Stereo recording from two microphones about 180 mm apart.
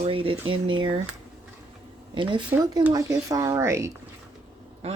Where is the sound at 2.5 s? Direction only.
20° right (ahead or behind).